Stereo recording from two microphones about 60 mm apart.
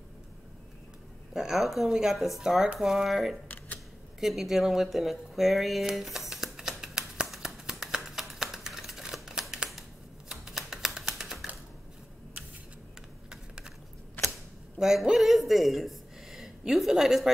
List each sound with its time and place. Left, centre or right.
1.3 s speech: centre
3.4 s camera: left
4.2 s a sound: centre
13.3 s typing: centre
14.2 s camera: left
14.8 s speech: centre